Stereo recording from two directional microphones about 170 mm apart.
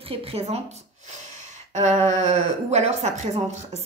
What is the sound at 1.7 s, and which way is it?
A woman's voice, 45° right (ahead or behind).